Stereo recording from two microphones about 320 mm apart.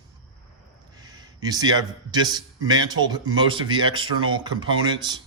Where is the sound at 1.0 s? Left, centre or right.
Centre.